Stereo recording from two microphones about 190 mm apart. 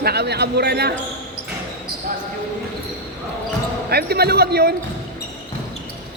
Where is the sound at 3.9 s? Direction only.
55° right (ahead or behind).